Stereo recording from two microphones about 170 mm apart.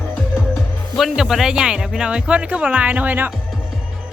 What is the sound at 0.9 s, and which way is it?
Speech, centre (ahead or behind).